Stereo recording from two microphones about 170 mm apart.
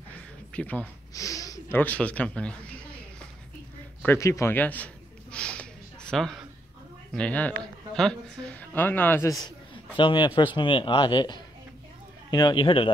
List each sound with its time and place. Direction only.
0.5 s speech: 10° left (ahead or behind)
4.0 s a sound: 15° left (ahead or behind)
7.2 s speech: 10° left (ahead or behind)
9.9 s a man's voice: 30° left (ahead or behind)